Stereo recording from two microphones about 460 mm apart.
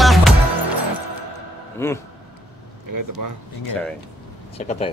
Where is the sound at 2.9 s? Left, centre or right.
Right.